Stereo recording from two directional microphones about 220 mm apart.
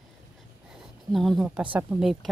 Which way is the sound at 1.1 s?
Centre (ahead or behind).